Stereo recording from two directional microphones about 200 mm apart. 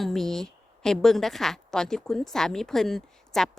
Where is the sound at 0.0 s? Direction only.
Centre (ahead or behind).